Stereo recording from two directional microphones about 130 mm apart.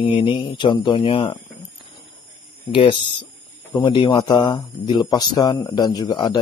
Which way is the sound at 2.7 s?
40° left (ahead or behind).